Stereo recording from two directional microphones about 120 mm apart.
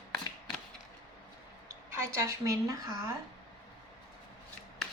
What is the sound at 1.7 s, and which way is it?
Speech, 25° right (ahead or behind).